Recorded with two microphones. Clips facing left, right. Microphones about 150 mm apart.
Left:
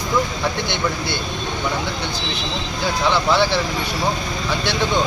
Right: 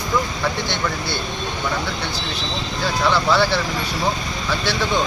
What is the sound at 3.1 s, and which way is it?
Speech, 15° left (ahead or behind).